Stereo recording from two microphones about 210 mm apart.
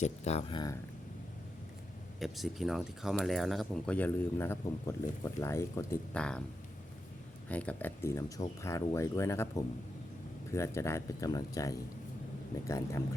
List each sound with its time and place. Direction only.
0.0 s speech: 30° left (ahead or behind)
2.1 s speech: centre (ahead or behind)
7.4 s speech: 5° left (ahead or behind)